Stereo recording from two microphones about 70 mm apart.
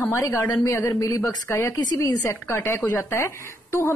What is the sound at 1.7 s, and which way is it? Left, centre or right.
Speech, left.